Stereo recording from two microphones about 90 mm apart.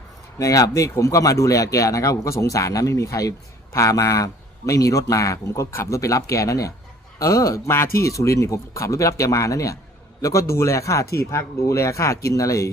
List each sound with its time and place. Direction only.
0.3 s speech: 40° left (ahead or behind)